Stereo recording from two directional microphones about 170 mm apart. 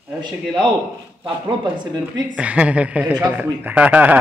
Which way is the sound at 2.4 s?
5° right (ahead or behind).